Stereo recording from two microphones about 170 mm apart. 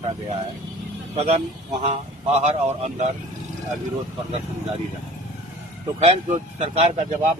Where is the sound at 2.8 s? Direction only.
40° right (ahead or behind).